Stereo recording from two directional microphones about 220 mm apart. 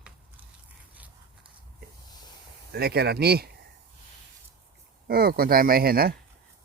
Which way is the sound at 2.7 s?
45° right (ahead or behind).